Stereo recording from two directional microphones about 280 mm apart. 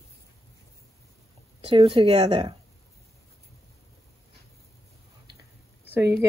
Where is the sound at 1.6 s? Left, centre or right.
Centre.